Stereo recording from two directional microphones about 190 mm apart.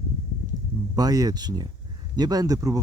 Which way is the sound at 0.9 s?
20° right (ahead or behind).